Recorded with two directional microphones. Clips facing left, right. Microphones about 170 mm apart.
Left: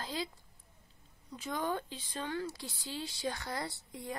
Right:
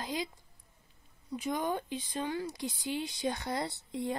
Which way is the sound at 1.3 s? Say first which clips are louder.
Right 3 dB; 15° right (ahead or behind).